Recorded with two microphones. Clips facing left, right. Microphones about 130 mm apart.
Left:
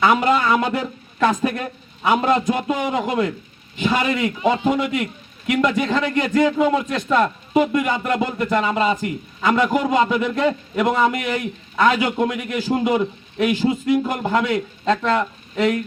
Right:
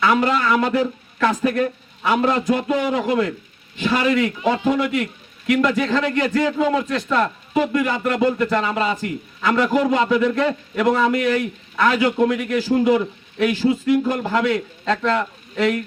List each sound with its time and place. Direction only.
0.0 s a man's voice: 20° left (ahead or behind)